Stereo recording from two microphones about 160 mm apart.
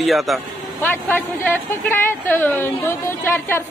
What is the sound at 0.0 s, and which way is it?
Speech, centre (ahead or behind).